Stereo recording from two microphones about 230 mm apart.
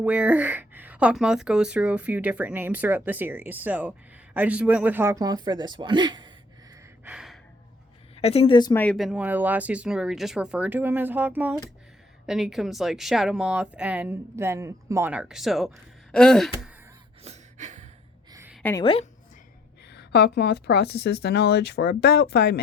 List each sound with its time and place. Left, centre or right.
0.0 s speech: centre
7.0 s gasp: centre
8.1 s a woman's voice: left
8.8 s speech: centre
17.2 s a sound: right
18.3 s a sound: centre
18.5 s a sound: centre
18.8 s a woman's voice: left
19.9 s a woman's voice: left